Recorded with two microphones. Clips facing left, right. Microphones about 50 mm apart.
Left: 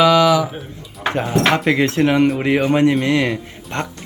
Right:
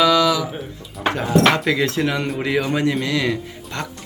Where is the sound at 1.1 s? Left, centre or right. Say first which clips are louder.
Even; left.